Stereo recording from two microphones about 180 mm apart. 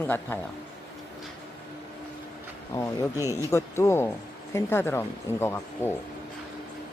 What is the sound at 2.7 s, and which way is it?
Speech, 15° left (ahead or behind).